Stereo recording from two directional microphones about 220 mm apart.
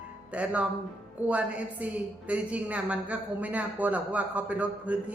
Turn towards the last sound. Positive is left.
turn(degrees=-5)  # may be behind; listen again after turning